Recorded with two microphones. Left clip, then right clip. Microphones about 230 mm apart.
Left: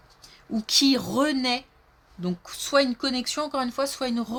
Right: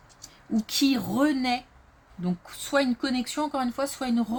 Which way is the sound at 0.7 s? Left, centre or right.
Left.